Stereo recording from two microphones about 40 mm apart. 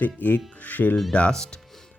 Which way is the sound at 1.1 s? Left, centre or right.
Left.